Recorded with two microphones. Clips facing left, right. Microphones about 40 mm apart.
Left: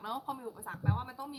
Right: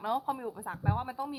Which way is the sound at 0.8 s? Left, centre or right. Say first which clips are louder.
Right 4 dB; centre.